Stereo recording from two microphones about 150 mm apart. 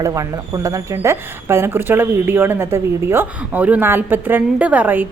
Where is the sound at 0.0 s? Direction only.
20° right (ahead or behind).